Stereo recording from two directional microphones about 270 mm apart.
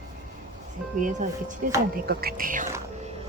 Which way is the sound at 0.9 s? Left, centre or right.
Right.